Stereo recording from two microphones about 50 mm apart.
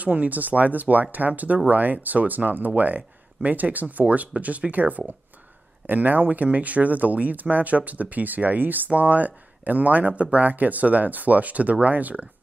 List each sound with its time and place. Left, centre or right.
0.0 s speech: right